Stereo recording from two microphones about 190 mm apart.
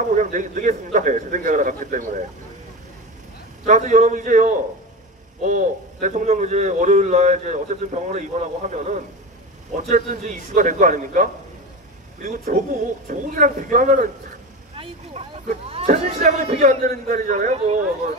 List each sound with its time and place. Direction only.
0.1 s a man's voice: 40° right (ahead or behind)
3.6 s a man's voice: 40° right (ahead or behind)
15.2 s a man's voice: 35° right (ahead or behind)